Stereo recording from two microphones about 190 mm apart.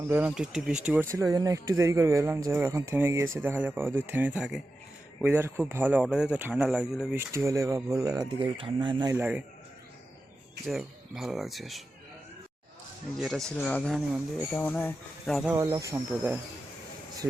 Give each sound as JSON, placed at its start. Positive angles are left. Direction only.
{"t": 0.1, "sound": "speech", "side_deg": -5}
{"t": 7.2, "sound": "speech", "side_deg": -15}
{"t": 9.1, "sound": "speech", "side_deg": -5}
{"t": 10.7, "sound": "speech", "side_deg": 0}
{"t": 13.1, "sound": "speech", "side_deg": 0}
{"t": 15.4, "sound": "speech", "side_deg": -10}